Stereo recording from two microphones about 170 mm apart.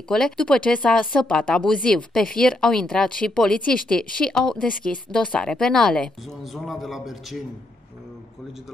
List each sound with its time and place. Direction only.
0.1 s speech: 5° left (ahead or behind)